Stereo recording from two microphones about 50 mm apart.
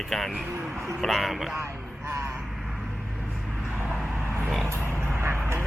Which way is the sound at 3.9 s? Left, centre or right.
Centre.